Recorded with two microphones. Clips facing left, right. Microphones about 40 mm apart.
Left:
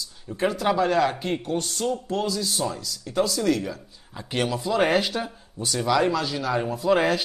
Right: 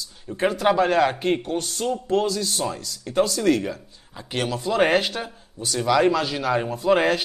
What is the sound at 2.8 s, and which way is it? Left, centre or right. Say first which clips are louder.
Speech: right 3 dB; right.